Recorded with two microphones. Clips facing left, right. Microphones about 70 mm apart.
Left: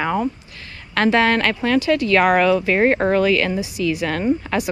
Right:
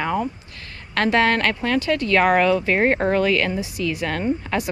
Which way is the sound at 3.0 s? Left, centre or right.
Left.